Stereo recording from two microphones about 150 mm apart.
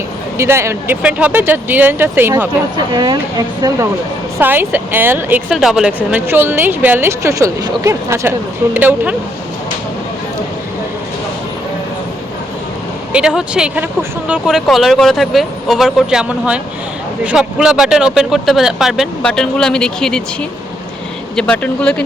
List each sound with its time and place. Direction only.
0.3 s a woman's voice: 15° right (ahead or behind)
2.7 s speech: 30° right (ahead or behind)
4.4 s a woman's voice: 15° right (ahead or behind)
13.1 s speech: 5° right (ahead or behind)
21.3 s speech: 10° left (ahead or behind)